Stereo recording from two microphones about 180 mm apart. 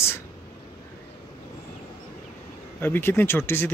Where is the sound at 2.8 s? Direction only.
10° left (ahead or behind).